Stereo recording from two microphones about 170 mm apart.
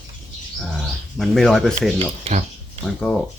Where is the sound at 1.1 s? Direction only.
Centre (ahead or behind).